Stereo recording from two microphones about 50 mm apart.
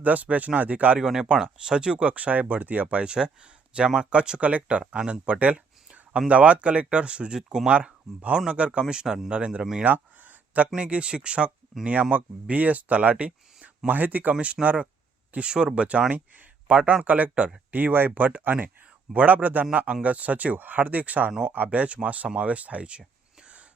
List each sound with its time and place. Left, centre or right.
0.0 s speech: right
0.9 s speech: centre
2.0 s speech: right; by 7.7 s centre
7.7 s speech: right
8.8 s speech: centre
9.3 s speech: right
9.8 s a sound: right
10.8 s speech: right
15.4 s speech: centre